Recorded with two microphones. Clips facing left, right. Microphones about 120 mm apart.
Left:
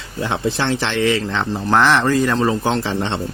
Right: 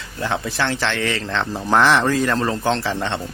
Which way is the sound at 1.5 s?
Centre (ahead or behind).